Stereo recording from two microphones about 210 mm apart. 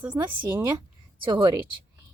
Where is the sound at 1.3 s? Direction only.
20° right (ahead or behind).